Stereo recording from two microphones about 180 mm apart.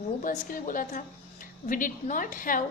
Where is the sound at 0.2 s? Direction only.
50° left (ahead or behind).